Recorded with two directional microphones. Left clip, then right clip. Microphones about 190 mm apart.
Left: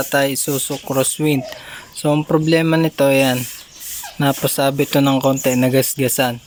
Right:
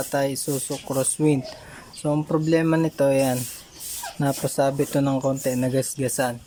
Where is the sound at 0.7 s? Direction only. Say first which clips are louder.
Left 6 dB; 15° left (ahead or behind).